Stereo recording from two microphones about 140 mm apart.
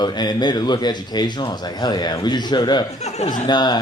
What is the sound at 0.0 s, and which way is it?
Speech, 30° left (ahead or behind).